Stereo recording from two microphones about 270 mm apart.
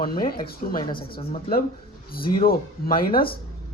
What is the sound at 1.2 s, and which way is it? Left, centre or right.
Speech, left.